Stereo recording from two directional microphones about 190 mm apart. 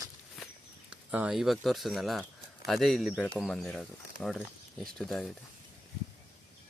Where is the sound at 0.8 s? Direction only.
5° right (ahead or behind).